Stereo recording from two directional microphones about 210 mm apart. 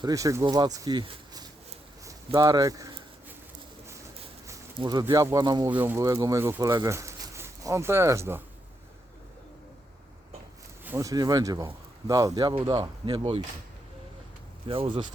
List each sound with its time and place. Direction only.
0.0 s speech: 15° right (ahead or behind)
2.0 s a sound: 20° right (ahead or behind)
4.4 s speech: 15° right (ahead or behind)
10.8 s speech: 15° right (ahead or behind)
14.7 s speech: 25° right (ahead or behind)